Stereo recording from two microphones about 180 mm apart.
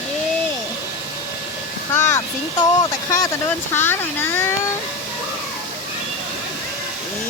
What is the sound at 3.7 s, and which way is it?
Speech, 10° left (ahead or behind).